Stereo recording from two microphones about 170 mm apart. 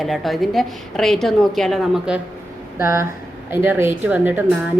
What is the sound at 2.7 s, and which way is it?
A woman's voice, 15° right (ahead or behind).